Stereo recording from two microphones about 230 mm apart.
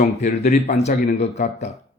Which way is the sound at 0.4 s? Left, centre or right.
Left.